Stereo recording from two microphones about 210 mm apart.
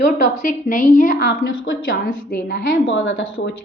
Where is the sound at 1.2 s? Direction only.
60° left (ahead or behind).